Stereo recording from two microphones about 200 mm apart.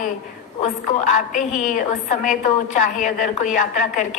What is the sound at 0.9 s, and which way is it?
A woman's voice, 40° left (ahead or behind).